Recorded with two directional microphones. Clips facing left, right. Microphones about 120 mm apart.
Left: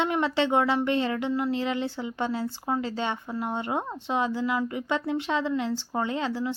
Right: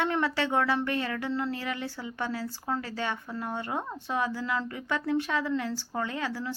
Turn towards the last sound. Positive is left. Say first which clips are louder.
# left 4 dB
turn(degrees=20)  # may be behind; listen again after turning